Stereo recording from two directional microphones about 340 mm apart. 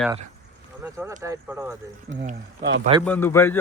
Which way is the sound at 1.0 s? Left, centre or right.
Centre.